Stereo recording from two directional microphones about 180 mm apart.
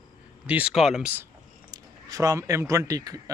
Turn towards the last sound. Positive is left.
turn(degrees=-20)  # may be behind; listen again after turning